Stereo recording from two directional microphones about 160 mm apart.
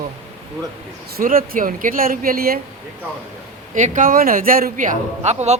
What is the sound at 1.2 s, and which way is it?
Speech, 60° right (ahead or behind).